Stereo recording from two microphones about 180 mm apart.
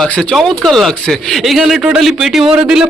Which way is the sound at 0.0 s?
5° left (ahead or behind).